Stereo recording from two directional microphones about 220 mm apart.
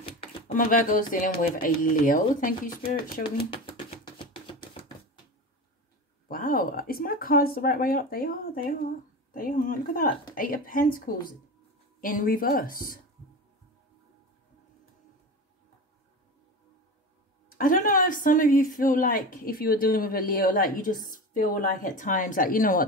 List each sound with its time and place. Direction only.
0.6 s a woman's voice: 40° left (ahead or behind)
3.3 s a sound: 25° left (ahead or behind)
6.2 s a woman's voice: 40° left (ahead or behind)
17.5 s a woman's voice: 40° left (ahead or behind)